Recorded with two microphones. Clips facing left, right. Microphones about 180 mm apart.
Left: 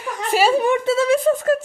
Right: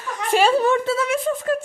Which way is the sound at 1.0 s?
35° left (ahead or behind).